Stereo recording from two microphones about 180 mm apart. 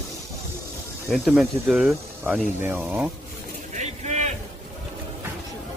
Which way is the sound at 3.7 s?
40° right (ahead or behind).